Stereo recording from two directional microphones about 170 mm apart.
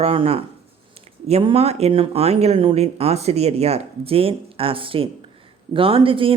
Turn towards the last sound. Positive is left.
turn(degrees=-30)  # may be behind; listen again after turning